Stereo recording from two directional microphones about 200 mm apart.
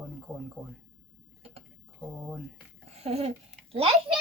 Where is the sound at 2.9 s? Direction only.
30° right (ahead or behind).